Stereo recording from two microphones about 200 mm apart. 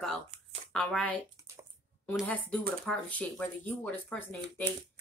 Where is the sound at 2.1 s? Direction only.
5° left (ahead or behind).